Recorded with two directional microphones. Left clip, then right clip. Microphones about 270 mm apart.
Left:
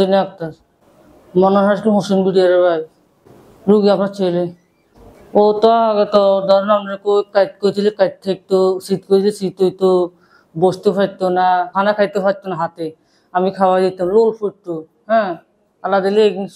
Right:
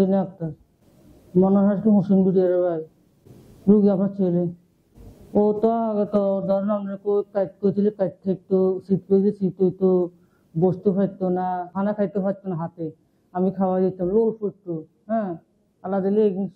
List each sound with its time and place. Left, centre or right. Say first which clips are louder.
0.0 s speech: left 8 dB; centre
1.4 s speech: left 8 dB; centre
5.6 s speech: left 10 dB; centre
9.8 s speech: left 8 dB; left
10.7 s speech: left 7 dB; centre
14.1 s speech: left 9 dB; left
15.0 s a man's voice: left 11 dB; centre